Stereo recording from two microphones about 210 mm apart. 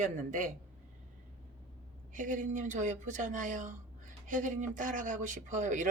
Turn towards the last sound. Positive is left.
turn(degrees=-40)  # may be behind; listen again after turning